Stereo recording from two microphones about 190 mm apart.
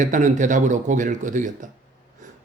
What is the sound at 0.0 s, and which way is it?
A man's voice, 40° right (ahead or behind).